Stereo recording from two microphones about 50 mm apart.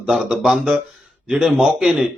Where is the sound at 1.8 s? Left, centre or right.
Right.